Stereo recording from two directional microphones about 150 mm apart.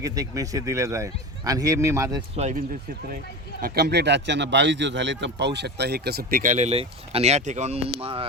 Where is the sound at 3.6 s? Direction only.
80° right.